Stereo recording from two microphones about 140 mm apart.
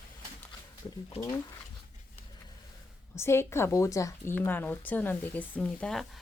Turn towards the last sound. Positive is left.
turn(degrees=0)  # may be behind; listen again after turning